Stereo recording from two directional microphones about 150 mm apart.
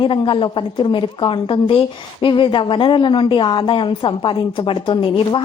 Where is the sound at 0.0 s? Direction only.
35° left (ahead or behind).